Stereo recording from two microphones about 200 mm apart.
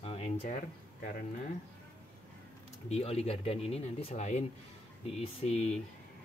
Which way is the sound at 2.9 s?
30° left (ahead or behind).